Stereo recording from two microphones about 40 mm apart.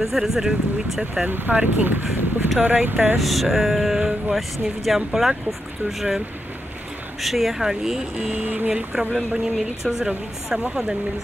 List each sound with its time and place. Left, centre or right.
0.0 s speech: centre
1.5 s speech: right
3.2 s speech: centre
7.2 s speech: centre
8.3 s speech: right
9.1 s speech: centre